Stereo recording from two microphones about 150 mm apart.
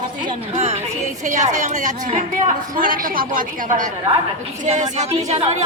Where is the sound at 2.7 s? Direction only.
70° right (ahead or behind).